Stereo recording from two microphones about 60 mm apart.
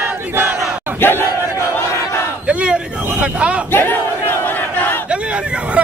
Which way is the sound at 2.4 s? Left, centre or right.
Centre.